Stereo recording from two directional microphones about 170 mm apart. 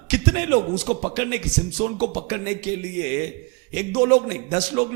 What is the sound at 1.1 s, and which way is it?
A man's voice, 10° right (ahead or behind).